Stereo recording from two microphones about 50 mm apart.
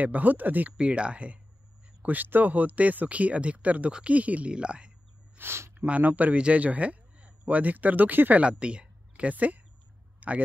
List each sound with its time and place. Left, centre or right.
0.0 s speech: right
0.7 s speech: right
2.0 s speech: right
5.4 s speech: right
5.9 s speech: right
8.4 s speech: right
10.2 s a sound: right